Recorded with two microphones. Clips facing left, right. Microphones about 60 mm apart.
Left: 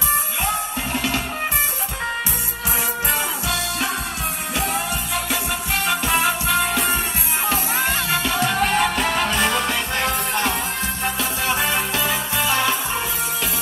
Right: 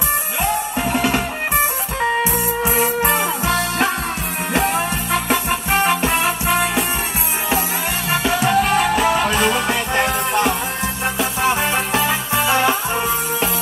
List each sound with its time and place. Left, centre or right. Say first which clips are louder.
0.9 s music: right 4 dB; right
8.1 s music: right 3 dB; right
8.7 s music: right 4 dB; centre
9.2 s music: right 3 dB; right